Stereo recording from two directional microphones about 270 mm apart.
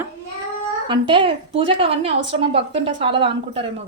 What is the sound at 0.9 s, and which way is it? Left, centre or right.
A woman's voice, centre.